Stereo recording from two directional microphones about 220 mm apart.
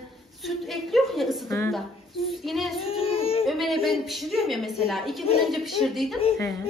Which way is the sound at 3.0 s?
25° left (ahead or behind).